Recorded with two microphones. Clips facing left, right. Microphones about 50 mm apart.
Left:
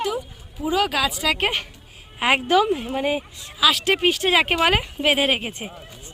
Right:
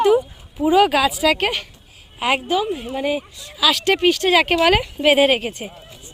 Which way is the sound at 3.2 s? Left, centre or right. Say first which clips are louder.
Even; centre.